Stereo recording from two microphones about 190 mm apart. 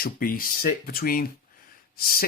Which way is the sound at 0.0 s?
50° left (ahead or behind).